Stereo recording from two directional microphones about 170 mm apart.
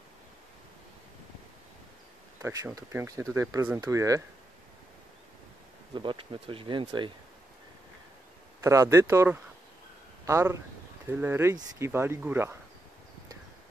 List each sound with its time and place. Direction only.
2.4 s speech: 15° right (ahead or behind)
5.9 s speech: 30° right (ahead or behind)
8.6 s speech: 15° right (ahead or behind)